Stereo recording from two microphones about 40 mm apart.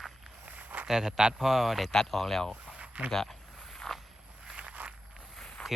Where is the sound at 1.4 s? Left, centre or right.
Centre.